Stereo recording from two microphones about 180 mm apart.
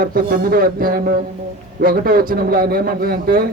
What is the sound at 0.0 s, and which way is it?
A man's voice, 55° right (ahead or behind).